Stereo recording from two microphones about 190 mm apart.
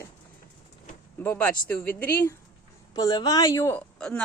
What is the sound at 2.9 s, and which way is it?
Speech, 20° left (ahead or behind).